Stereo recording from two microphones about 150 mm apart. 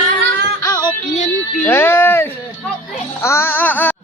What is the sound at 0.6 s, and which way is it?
Music, 25° left (ahead or behind).